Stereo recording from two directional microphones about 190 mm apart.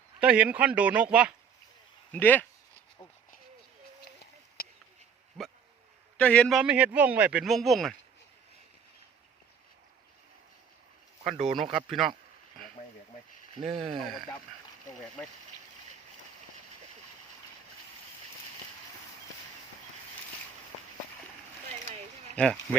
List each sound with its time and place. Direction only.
0.2 s speech: 5° right (ahead or behind)
2.1 s speech: 10° left (ahead or behind)
5.4 s a sound: centre (ahead or behind)
6.1 s speech: 5° left (ahead or behind)
6.6 s speech: 5° right (ahead or behind)
11.4 s speech: centre (ahead or behind)
13.7 s speech: 25° right (ahead or behind)
13.9 s speech: centre (ahead or behind)
22.4 s speech: 10° left (ahead or behind)